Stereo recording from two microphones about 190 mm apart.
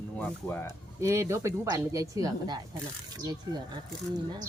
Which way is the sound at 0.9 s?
15° right (ahead or behind).